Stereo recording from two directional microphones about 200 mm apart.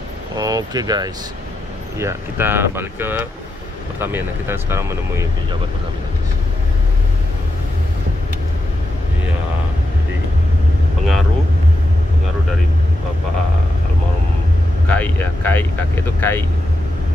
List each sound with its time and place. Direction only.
0.4 s speech: 20° right (ahead or behind)
14.9 s speech: 10° left (ahead or behind)